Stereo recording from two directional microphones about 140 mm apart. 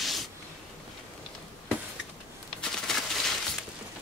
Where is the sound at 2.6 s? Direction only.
5° left (ahead or behind).